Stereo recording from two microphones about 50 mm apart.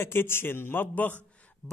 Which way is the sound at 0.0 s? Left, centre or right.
Left.